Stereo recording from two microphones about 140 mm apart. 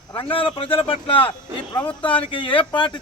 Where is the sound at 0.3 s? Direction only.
40° left (ahead or behind).